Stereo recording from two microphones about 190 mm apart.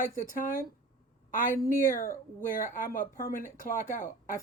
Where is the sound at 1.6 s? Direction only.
15° left (ahead or behind).